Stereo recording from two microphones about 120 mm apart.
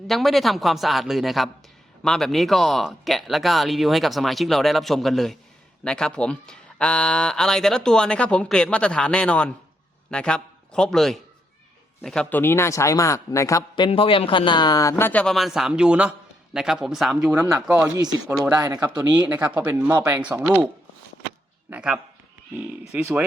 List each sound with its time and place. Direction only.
0.1 s a man's voice: centre (ahead or behind); by 13.7 s 25° left (ahead or behind)
13.7 s a man's voice: 45° left (ahead or behind); by 17.3 s 5° right (ahead or behind)
17.3 s speech: 25° right (ahead or behind)
17.7 s speech: 10° right (ahead or behind)
17.9 s speech: 35° right (ahead or behind)
19.3 s speech: 15° right (ahead or behind)
21.7 s speech: 10° right (ahead or behind)